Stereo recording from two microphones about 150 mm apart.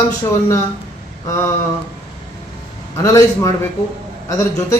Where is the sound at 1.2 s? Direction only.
20° left (ahead or behind).